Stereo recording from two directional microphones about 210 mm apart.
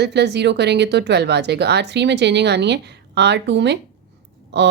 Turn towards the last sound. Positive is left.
turn(degrees=-55)  # may be behind; listen again after turning